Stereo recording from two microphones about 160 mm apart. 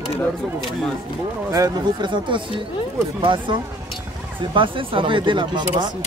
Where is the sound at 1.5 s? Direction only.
25° right (ahead or behind).